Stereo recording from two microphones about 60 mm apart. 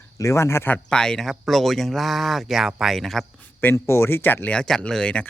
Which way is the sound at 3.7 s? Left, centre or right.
Left.